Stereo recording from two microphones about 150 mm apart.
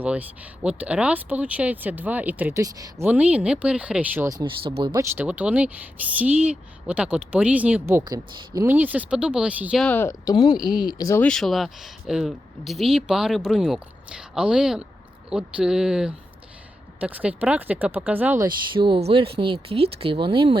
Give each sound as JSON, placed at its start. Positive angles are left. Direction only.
{"t": 0.0, "sound": "speech", "side_deg": -10}
{"t": 2.6, "sound": "speech", "side_deg": -25}
{"t": 3.1, "sound": "speech", "side_deg": -10}
{"t": 4.3, "sound": "speech", "side_deg": -30}
{"t": 5.1, "sound": "speech", "side_deg": -10}
{"t": 8.0, "sound": "speech", "side_deg": -25}
{"t": 8.7, "sound": "speech", "side_deg": -10}
{"t": 9.8, "sound": "speech", "side_deg": 15}
{"t": 11.2, "sound": "speech", "side_deg": 5}
{"t": 18.4, "sound": "speech", "side_deg": -30}